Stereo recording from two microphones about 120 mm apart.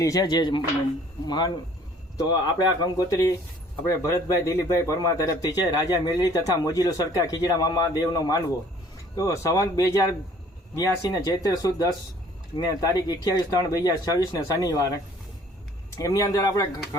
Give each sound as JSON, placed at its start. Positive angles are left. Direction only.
{"t": 0.0, "sound": "speech", "side_deg": 30}
{"t": 16.0, "sound": "speech", "side_deg": 25}